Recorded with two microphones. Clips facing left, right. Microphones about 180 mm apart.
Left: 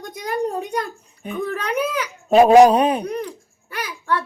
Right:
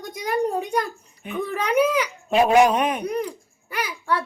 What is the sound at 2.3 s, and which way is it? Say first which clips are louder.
Speech: left 7 dB; 40° left (ahead or behind).